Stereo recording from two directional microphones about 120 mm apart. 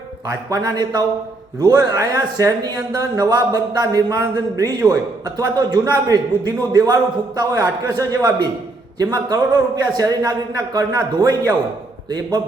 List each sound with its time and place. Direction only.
0.3 s a man's voice: 35° right (ahead or behind)